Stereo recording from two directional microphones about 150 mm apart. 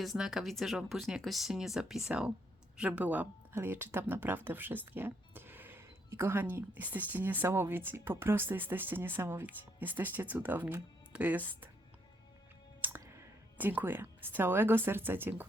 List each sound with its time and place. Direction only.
0.0 s speech: centre (ahead or behind)
12.8 s speech: 15° right (ahead or behind)